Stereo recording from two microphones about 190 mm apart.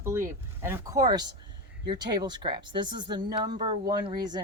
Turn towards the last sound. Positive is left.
turn(degrees=-20)  # may be behind; listen again after turning